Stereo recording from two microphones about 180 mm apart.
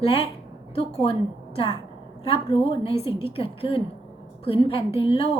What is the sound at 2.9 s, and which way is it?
Speech, 15° right (ahead or behind).